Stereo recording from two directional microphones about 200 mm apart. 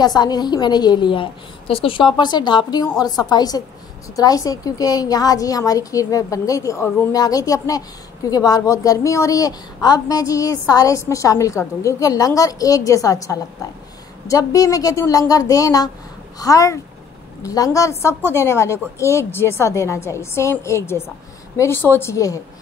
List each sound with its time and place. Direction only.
0.0 s a woman's voice: 20° left (ahead or behind)